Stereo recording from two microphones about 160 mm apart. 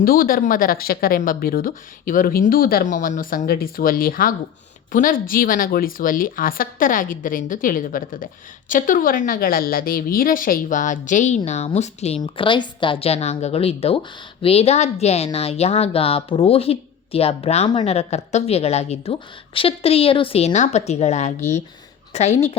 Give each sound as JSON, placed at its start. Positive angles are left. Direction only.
{"t": 0.0, "sound": "speech", "side_deg": 65}
{"t": 12.2, "sound": "a woman's voice", "side_deg": 30}